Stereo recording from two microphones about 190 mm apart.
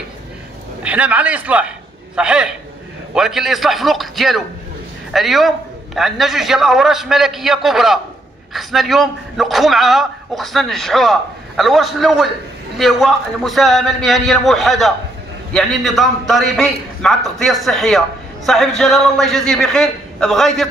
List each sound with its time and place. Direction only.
0.8 s a man's voice: 5° right (ahead or behind)